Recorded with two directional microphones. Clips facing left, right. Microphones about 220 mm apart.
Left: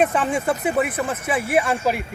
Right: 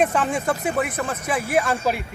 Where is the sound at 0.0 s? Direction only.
5° left (ahead or behind).